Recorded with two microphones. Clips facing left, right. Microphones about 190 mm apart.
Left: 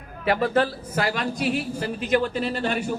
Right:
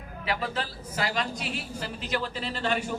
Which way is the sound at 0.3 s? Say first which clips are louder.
Left 10 dB; 55° left (ahead or behind).